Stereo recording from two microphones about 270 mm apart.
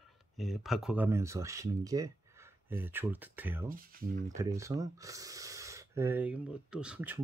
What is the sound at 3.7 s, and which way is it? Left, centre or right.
Speech, right.